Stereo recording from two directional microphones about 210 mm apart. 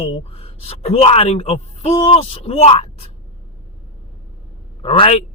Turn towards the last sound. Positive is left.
turn(degrees=30)  # may be behind; listen again after turning